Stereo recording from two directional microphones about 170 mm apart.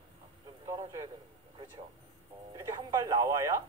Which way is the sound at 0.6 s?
20° right (ahead or behind).